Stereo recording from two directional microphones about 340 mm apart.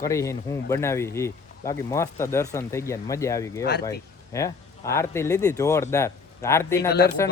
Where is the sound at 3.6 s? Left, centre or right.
Left.